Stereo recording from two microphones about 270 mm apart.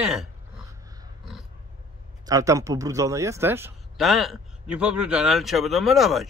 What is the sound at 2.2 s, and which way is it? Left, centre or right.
A man's voice, centre.